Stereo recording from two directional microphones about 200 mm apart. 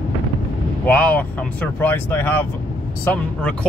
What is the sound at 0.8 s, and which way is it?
Speech, 5° left (ahead or behind).